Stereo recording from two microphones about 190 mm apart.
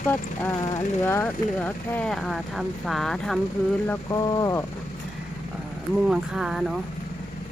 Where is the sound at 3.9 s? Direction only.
20° left (ahead or behind).